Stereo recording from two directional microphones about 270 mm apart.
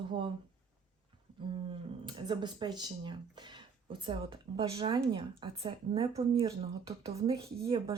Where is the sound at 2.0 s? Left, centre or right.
Centre.